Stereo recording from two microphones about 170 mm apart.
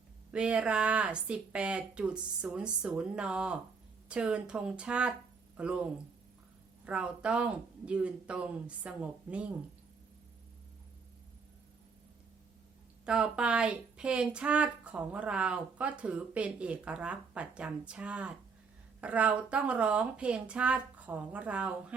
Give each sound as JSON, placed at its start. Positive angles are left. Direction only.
{"t": 0.3, "sound": "speech", "side_deg": -5}
{"t": 13.1, "sound": "speech", "side_deg": -5}